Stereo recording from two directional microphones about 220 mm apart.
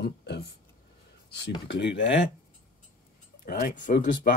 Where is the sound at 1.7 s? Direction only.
55° left (ahead or behind).